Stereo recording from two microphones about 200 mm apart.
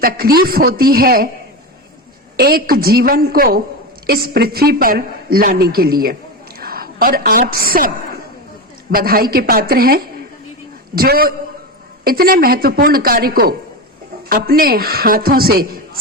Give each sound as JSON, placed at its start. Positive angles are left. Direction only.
{"t": 0.0, "sound": "a woman's voice", "side_deg": -50}
{"t": 2.3, "sound": "a woman's voice", "side_deg": -50}